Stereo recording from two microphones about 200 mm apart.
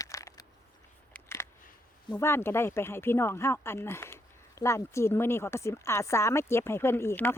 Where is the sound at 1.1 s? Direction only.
10° left (ahead or behind).